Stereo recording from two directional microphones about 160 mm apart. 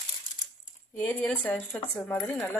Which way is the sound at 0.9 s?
10° left (ahead or behind).